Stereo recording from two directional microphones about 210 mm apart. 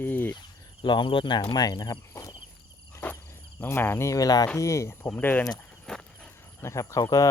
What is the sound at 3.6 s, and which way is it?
Speech, 10° left (ahead or behind).